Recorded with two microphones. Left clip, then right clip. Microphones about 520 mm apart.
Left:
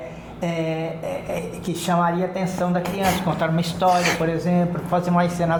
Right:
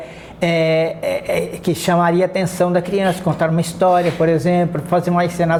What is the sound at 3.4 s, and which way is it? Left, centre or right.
Speech, right.